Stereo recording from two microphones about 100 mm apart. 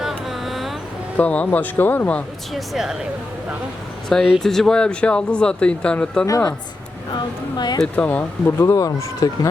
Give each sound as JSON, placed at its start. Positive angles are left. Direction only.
{"t": 0.0, "sound": "a sound", "side_deg": 0}
{"t": 1.1, "sound": "speech", "side_deg": 15}
{"t": 2.5, "sound": "speech", "side_deg": 0}
{"t": 4.1, "sound": "speech", "side_deg": 5}
{"t": 6.2, "sound": "speech", "side_deg": 35}
{"t": 7.1, "sound": "a woman's voice", "side_deg": 45}
{"t": 7.9, "sound": "speech", "side_deg": 20}
{"t": 8.7, "sound": "speech", "side_deg": 35}